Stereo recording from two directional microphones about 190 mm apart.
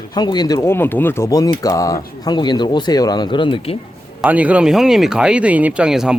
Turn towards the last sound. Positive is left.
turn(degrees=-5)  # may be behind; listen again after turning